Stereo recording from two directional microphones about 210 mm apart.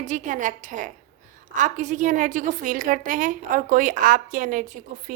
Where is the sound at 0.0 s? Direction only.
35° right (ahead or behind).